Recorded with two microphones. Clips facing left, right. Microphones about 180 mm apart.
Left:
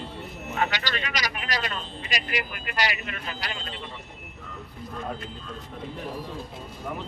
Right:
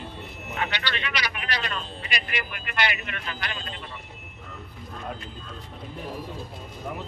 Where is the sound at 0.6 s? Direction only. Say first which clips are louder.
Left 2 dB; 40° left (ahead or behind).